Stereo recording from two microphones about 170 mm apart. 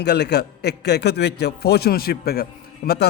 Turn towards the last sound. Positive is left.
turn(degrees=65)  # may be behind; listen again after turning